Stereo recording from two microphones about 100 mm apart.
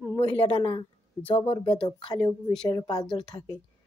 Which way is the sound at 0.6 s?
60° left (ahead or behind).